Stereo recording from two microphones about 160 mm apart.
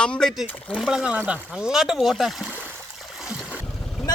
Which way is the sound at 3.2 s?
5° right (ahead or behind).